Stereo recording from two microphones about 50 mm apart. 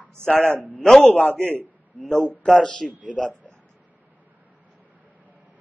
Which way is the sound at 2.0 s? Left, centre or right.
Centre.